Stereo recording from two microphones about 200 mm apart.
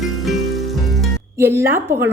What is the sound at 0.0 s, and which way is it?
Music, centre (ahead or behind).